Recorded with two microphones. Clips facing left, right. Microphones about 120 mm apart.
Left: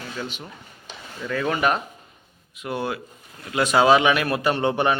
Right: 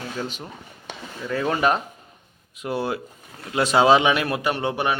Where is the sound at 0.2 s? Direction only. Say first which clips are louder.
Right 1 dB; 40° right (ahead or behind).